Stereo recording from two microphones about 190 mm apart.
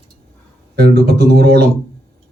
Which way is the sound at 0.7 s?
55° right (ahead or behind).